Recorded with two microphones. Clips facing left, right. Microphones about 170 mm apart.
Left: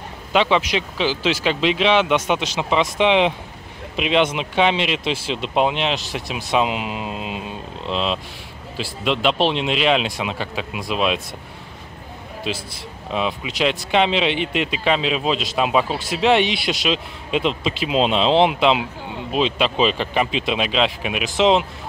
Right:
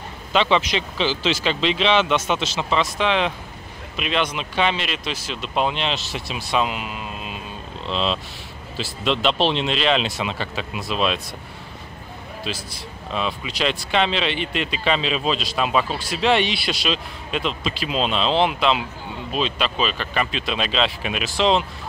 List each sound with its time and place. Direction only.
0.3 s a man's voice: 10° left (ahead or behind)
12.5 s a man's voice: 15° left (ahead or behind)